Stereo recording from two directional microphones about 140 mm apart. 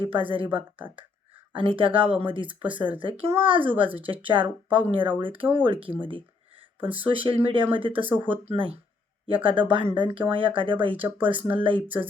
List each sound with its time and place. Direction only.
0.0 s speech: 40° right (ahead or behind)
6.7 s speech: 10° right (ahead or behind)
7.1 s speech: 40° right (ahead or behind)